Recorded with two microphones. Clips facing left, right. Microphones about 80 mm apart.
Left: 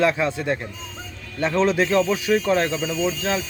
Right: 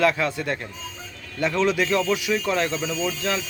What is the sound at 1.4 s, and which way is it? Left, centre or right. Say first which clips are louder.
Speech: left 2 dB; left.